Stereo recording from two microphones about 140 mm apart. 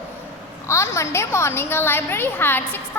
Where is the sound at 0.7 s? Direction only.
20° left (ahead or behind).